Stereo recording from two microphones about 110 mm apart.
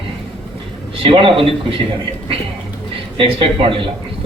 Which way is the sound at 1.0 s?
55° right (ahead or behind).